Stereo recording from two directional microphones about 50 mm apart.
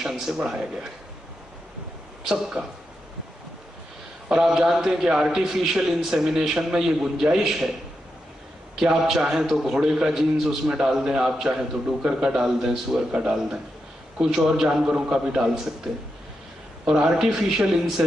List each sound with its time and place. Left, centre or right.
0.0 s a man's voice: centre
2.2 s a man's voice: centre
4.3 s a man's voice: centre
9.0 s a man's voice: centre